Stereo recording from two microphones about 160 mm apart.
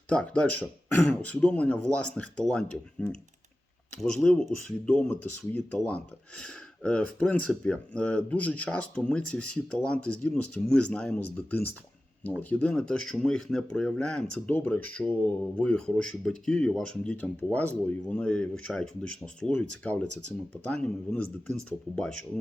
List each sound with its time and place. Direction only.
0.1 s speech: 5° left (ahead or behind)